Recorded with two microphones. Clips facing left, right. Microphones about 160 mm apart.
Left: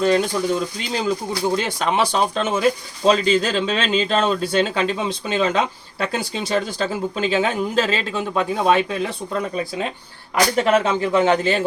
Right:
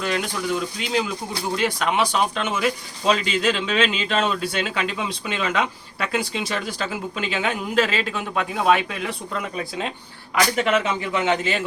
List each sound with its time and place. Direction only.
0.0 s speech: 35° left (ahead or behind)
10.5 s speech: 35° left (ahead or behind)